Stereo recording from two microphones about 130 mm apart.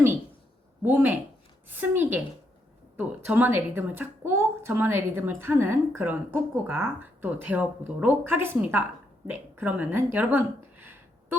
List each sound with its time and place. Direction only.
0.9 s a woman's voice: 15° right (ahead or behind)